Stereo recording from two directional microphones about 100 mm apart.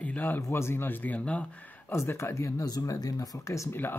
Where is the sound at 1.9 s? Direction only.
25° left (ahead or behind).